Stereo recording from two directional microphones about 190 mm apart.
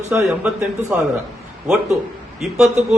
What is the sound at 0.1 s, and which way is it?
Speech, 10° right (ahead or behind).